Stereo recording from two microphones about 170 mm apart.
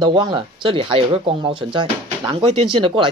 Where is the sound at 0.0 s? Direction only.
25° right (ahead or behind).